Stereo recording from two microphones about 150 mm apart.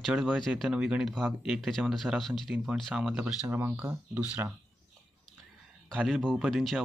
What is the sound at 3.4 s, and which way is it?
Speech, 15° right (ahead or behind).